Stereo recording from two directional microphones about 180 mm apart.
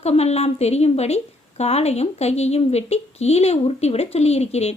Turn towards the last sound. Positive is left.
turn(degrees=35)  # may be behind; listen again after turning